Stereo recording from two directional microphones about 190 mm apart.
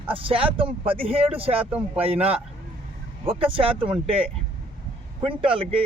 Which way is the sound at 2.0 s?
35° right (ahead or behind).